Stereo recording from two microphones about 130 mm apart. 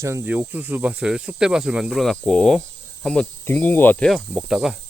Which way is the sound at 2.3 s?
5° left (ahead or behind).